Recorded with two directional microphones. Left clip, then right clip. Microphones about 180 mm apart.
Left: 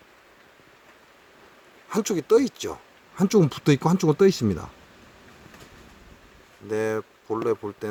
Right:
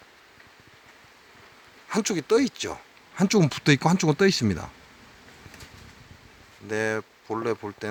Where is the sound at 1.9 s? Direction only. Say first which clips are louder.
Left 2 dB; 5° left (ahead or behind).